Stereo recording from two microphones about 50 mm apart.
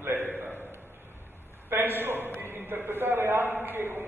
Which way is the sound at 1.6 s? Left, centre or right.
Right.